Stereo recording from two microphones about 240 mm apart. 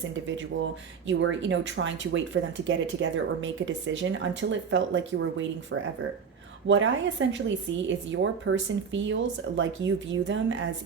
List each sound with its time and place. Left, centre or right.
0.1 s speech: right